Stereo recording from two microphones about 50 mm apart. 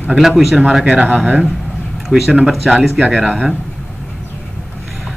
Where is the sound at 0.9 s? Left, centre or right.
Right.